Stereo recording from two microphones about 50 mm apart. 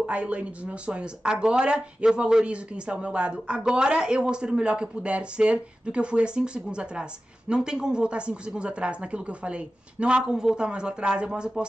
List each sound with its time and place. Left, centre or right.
0.0 s speech: right